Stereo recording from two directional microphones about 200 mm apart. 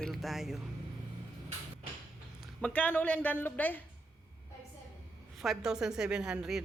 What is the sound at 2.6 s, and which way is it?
A woman's voice, 5° left (ahead or behind).